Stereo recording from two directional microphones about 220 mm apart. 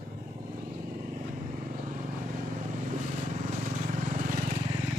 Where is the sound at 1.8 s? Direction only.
30° right (ahead or behind).